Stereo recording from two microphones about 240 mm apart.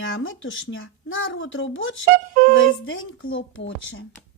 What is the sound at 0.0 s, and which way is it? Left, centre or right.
A child's voice, left.